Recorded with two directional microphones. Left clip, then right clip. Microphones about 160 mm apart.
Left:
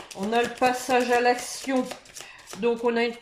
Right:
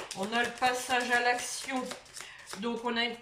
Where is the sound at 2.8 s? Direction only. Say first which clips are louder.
Left 5 dB; 40° left (ahead or behind).